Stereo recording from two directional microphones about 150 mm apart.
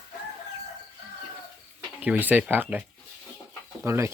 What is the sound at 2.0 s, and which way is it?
Speech, 10° right (ahead or behind).